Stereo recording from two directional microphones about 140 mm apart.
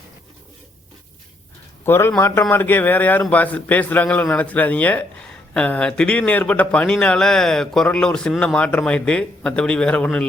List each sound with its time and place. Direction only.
1.8 s speech: 15° left (ahead or behind)